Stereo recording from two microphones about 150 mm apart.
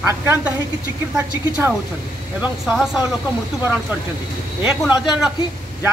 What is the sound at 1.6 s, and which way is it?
Speech, 15° right (ahead or behind).